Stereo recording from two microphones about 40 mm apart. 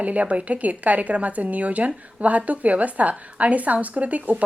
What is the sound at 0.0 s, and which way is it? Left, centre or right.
Speech, right.